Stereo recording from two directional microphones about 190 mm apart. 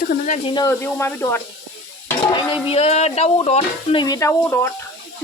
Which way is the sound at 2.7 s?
35° left (ahead or behind).